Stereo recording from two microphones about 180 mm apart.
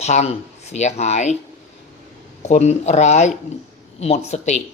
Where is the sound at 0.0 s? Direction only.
40° left (ahead or behind).